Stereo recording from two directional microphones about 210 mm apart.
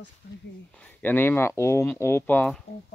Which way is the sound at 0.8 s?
10° left (ahead or behind).